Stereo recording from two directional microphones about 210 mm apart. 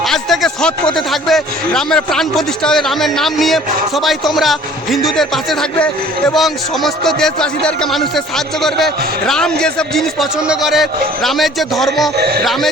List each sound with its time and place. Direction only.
0.0 s a sound: centre (ahead or behind)
0.9 s a man's voice: centre (ahead or behind)
12.1 s music: 50° right (ahead or behind)